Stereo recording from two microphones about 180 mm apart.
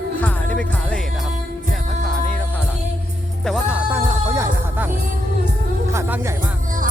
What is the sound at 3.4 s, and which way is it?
Music, centre (ahead or behind).